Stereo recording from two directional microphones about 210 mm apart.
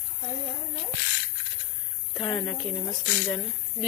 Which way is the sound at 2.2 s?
25° left (ahead or behind).